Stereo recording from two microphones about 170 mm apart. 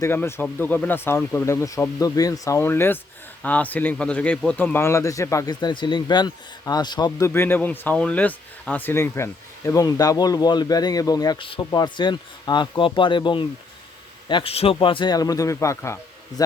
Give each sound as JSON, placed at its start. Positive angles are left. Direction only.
{"t": 0.0, "sound": "speech", "side_deg": 15}